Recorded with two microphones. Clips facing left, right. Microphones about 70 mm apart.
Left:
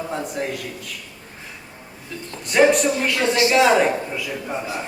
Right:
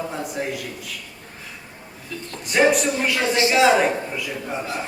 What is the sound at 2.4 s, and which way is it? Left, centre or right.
Speech, centre.